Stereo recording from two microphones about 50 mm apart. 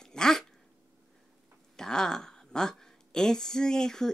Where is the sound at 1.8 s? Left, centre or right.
Centre.